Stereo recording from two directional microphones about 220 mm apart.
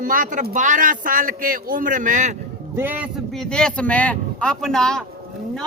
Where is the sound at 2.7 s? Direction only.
10° right (ahead or behind).